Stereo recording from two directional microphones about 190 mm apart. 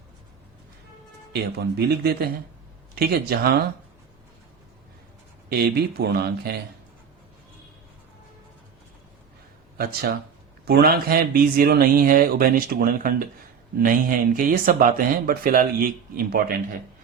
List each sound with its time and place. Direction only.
1.3 s speech: 60° right (ahead or behind)
5.5 s speech: 55° right (ahead or behind)
9.7 s speech: 55° right (ahead or behind)